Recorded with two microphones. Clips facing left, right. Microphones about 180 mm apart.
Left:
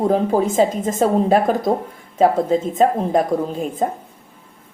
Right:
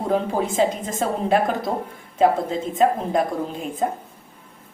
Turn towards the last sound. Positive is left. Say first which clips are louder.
# left 6 dB
turn(degrees=40)  # may be behind; listen again after turning